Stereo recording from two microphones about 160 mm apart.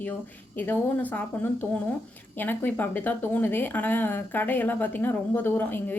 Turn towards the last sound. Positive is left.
turn(degrees=10)  # may be behind; listen again after turning